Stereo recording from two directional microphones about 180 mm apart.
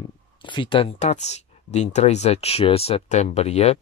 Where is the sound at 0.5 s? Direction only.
30° left (ahead or behind).